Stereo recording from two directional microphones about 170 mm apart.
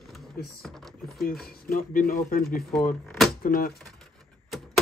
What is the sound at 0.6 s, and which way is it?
Speech, centre (ahead or behind).